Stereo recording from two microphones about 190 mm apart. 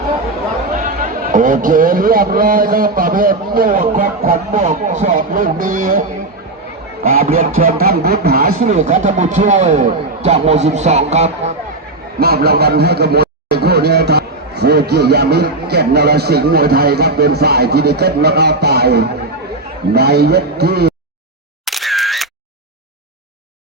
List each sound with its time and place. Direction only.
0.9 s a man's voice: 45° right (ahead or behind)
7.1 s a man's voice: 50° right (ahead or behind)
8.6 s speech: 40° right (ahead or behind)
12.2 s speech: 55° right (ahead or behind)
21.7 s single-lens reflex camera: centre (ahead or behind)